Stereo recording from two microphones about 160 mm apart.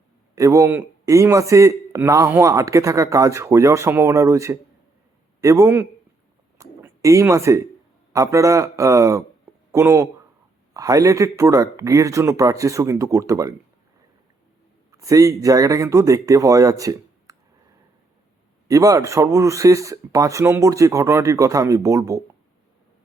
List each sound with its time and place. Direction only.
0.3 s a man's voice: 20° right (ahead or behind)
14.9 s a man's voice: 20° right (ahead or behind)
18.7 s a man's voice: 20° right (ahead or behind)